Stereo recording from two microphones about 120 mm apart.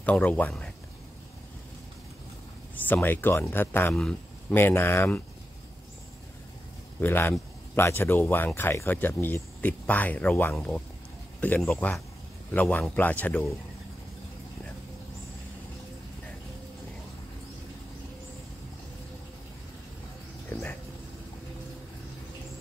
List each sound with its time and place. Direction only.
0.0 s speech: 10° left (ahead or behind)
2.7 s speech: 15° left (ahead or behind)
3.9 s speech: 5° left (ahead or behind)
4.6 s speech: 20° left (ahead or behind)
7.0 s a man's voice: 15° left (ahead or behind)